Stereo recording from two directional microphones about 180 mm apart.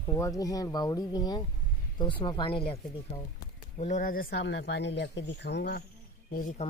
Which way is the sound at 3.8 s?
45° left (ahead or behind).